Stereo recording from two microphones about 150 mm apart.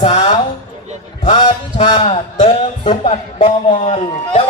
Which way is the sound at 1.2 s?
30° left (ahead or behind).